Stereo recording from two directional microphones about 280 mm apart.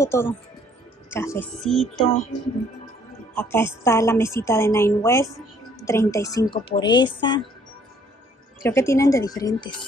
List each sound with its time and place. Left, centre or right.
0.0 s a woman's voice: centre
3.3 s a woman's voice: centre
8.6 s a woman's voice: centre